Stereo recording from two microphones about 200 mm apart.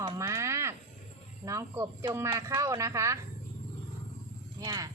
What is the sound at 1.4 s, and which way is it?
Speech, 15° right (ahead or behind).